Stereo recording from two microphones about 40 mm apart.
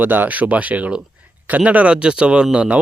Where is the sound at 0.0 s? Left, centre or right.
Right.